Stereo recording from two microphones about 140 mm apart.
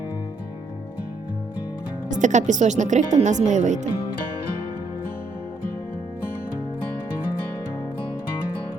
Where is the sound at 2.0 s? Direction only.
60° right (ahead or behind).